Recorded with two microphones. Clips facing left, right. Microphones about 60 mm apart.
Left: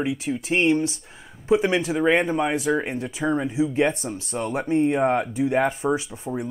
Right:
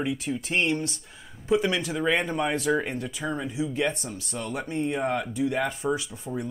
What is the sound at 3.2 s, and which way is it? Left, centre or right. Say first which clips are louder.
Speech: left 8 dB; left.